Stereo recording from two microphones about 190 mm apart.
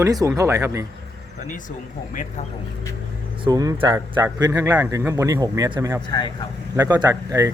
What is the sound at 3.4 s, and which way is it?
Speech, 20° right (ahead or behind).